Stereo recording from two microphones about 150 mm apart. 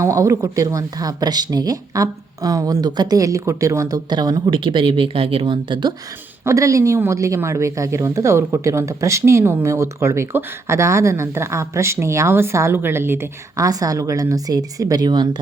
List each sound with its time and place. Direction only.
0.0 s speech: 20° right (ahead or behind)
6.4 s speech: 20° right (ahead or behind)